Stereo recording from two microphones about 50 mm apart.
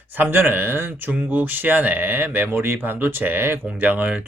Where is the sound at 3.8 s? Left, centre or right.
Right.